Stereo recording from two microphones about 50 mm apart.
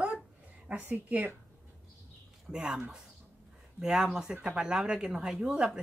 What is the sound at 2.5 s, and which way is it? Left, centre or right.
Speech, centre.